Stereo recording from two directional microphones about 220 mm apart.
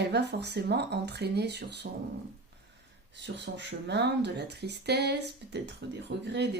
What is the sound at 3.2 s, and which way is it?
Speech, 50° right (ahead or behind).